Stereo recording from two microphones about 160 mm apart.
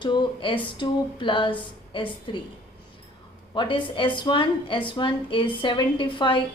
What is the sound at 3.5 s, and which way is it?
A woman's voice, 30° left (ahead or behind).